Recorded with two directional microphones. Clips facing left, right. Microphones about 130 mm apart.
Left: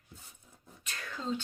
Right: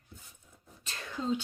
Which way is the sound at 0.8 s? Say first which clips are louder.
Even; 25° right (ahead or behind).